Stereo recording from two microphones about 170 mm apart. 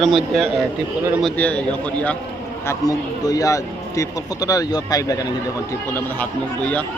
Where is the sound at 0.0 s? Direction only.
Centre (ahead or behind).